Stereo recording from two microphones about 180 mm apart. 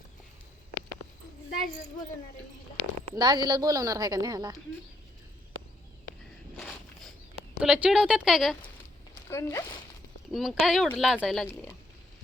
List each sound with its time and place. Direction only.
3.2 s a woman's voice: 25° right (ahead or behind)
7.6 s speech: 5° right (ahead or behind)
9.3 s speech: 15° left (ahead or behind)
10.3 s speech: centre (ahead or behind)